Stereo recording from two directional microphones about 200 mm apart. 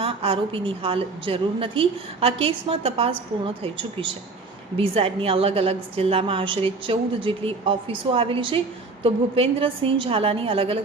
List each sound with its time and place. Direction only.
0.0 s a woman's voice: 25° right (ahead or behind)